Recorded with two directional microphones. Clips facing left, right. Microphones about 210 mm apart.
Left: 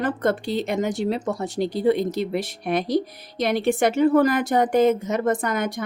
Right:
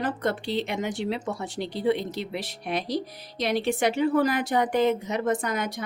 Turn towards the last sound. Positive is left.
turn(degrees=50)  # may be behind; listen again after turning